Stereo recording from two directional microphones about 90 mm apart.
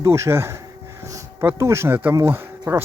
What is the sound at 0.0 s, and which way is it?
Speech, 30° right (ahead or behind).